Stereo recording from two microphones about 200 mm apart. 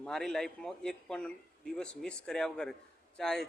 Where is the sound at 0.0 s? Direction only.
5° left (ahead or behind).